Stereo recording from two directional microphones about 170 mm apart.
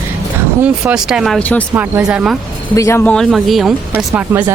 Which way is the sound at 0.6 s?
5° right (ahead or behind).